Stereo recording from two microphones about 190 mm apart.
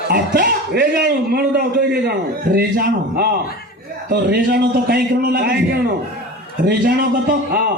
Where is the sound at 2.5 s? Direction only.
50° right (ahead or behind).